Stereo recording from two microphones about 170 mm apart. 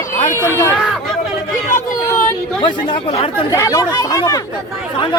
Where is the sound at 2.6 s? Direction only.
30° left (ahead or behind).